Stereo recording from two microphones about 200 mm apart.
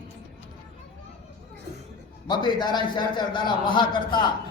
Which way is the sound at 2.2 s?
20° left (ahead or behind).